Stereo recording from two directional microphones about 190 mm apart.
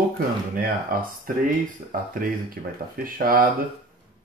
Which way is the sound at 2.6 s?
50° right (ahead or behind).